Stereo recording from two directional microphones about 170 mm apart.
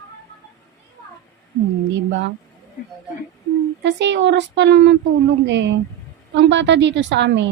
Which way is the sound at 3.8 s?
90° right.